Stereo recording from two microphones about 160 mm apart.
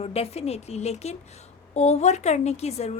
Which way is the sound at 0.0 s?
40° left (ahead or behind).